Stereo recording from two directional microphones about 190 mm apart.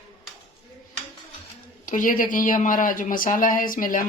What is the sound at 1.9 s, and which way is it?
Speech, 45° left (ahead or behind).